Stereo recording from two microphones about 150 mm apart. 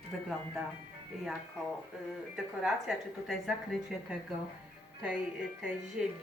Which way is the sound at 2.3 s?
5° right (ahead or behind).